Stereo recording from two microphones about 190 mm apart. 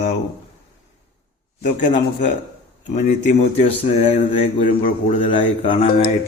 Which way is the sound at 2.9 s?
40° left (ahead or behind).